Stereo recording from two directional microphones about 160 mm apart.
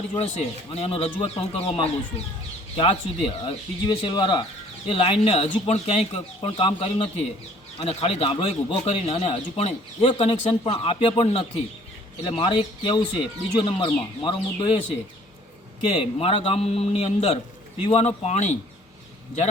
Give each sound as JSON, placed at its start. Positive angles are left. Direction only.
{"t": 0.1, "sound": "speech", "side_deg": 40}
{"t": 16.0, "sound": "speech", "side_deg": 35}